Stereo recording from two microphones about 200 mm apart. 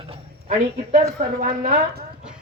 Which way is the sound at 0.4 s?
35° right (ahead or behind).